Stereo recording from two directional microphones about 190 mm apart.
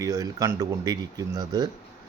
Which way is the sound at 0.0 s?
20° right (ahead or behind).